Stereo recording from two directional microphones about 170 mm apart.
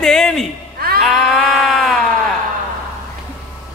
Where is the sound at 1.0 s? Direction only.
Centre (ahead or behind).